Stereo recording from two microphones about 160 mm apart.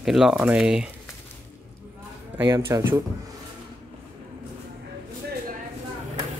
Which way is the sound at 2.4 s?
20° right (ahead or behind).